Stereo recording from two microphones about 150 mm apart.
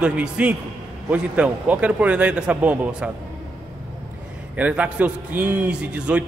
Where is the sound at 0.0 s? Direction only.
5° right (ahead or behind).